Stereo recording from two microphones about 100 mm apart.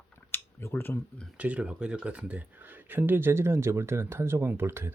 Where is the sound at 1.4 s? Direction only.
15° right (ahead or behind).